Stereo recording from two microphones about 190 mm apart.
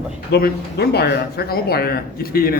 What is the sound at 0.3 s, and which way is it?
Speech, 55° left (ahead or behind).